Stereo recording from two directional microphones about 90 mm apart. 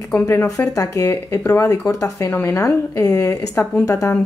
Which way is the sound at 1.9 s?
35° left (ahead or behind).